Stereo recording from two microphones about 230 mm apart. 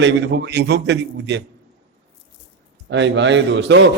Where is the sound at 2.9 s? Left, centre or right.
Right.